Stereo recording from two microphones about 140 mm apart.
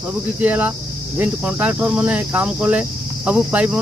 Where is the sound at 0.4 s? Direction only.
10° right (ahead or behind).